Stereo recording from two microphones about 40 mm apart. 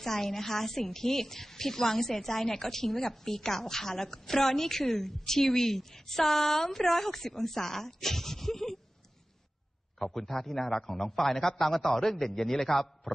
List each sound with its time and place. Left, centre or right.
0.0 s a woman's voice: centre
9.9 s a woman's voice: centre